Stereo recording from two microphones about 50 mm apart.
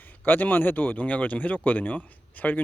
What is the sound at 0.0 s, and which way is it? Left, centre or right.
Speech, left.